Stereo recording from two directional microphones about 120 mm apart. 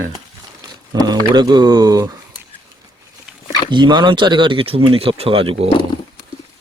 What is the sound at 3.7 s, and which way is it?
Speech, 40° right (ahead or behind).